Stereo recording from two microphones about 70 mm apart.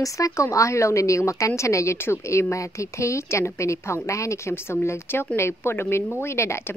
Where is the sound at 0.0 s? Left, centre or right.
Left.